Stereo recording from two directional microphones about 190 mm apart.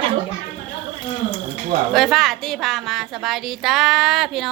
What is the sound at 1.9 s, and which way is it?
A woman's voice, centre (ahead or behind).